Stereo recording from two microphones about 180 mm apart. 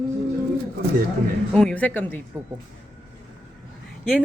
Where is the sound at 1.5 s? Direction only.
5° left (ahead or behind).